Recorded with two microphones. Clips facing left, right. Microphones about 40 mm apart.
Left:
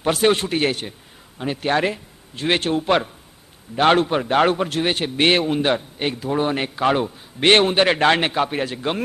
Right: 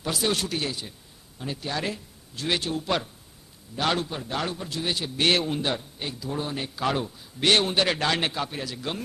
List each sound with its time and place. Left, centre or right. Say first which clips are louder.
0.0 s a man's voice: left 9 dB; left
0.7 s a man's voice: left 10 dB; left
6.7 s a man's voice: left 8 dB; left